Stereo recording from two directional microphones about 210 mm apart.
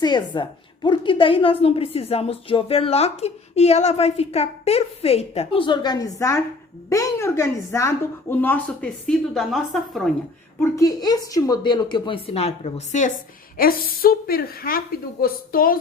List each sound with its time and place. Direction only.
0.0 s a woman's voice: 20° left (ahead or behind); by 10.1 s centre (ahead or behind)
10.6 s a woman's voice: 15° left (ahead or behind); by 15.8 s 45° left (ahead or behind)